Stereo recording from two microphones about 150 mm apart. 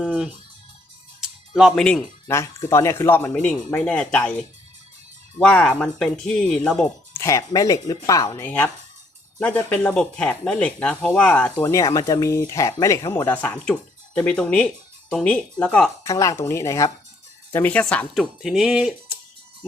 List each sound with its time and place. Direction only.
0.0 s speech: centre (ahead or behind)
2.2 s speech: 20° left (ahead or behind)
5.4 s speech: 5° left (ahead or behind)
7.2 s speech: 20° left (ahead or behind)
8.4 s speech: 10° left (ahead or behind)
11.6 s speech: 20° left (ahead or behind)
16.0 s speech: 20° left (ahead or behind)
18.1 s speech: centre (ahead or behind)